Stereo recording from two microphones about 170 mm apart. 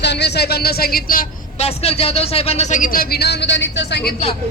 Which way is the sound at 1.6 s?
35° left (ahead or behind).